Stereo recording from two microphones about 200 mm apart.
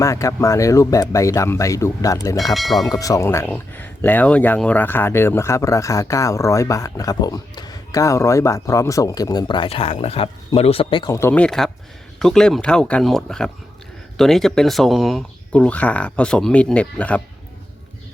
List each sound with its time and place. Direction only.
0.0 s speech: 15° left (ahead or behind)
2.4 s speech: centre (ahead or behind)
2.9 s speech: 15° left (ahead or behind)